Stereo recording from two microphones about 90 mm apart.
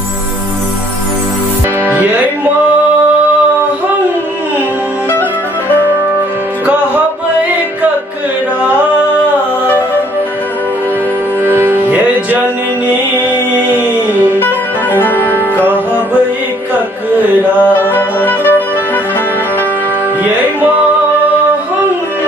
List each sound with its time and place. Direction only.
11.4 s music: 25° right (ahead or behind)
14.4 s music: 20° left (ahead or behind)
17.9 s music: 20° left (ahead or behind)